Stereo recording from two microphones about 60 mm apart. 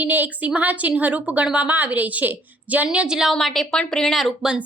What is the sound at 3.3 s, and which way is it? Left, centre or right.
A woman's voice, centre.